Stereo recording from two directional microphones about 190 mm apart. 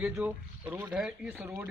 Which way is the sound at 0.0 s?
10° right (ahead or behind).